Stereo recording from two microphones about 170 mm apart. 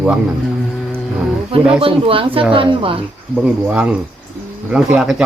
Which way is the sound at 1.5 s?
35° right (ahead or behind).